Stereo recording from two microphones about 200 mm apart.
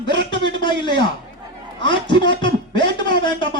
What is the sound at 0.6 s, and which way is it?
A man's voice, 25° left (ahead or behind).